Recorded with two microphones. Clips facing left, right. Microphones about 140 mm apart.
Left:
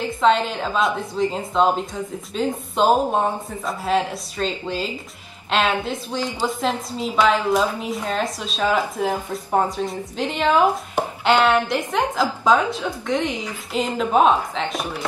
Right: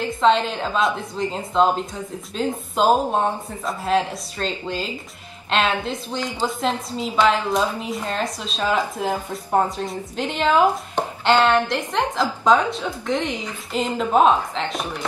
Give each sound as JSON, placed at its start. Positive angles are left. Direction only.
{"t": 0.2, "sound": "speech", "side_deg": 0}